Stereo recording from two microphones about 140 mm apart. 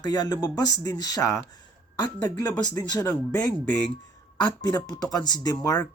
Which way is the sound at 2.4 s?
30° left (ahead or behind).